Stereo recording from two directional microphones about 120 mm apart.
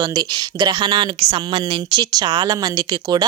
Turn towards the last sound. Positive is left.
turn(degrees=-35)  # may be behind; listen again after turning